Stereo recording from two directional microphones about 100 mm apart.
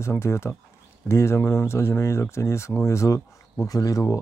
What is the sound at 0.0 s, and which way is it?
Speech, 25° left (ahead or behind).